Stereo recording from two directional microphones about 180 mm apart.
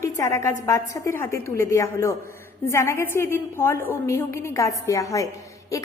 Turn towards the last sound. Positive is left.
turn(degrees=20)  # may be behind; listen again after turning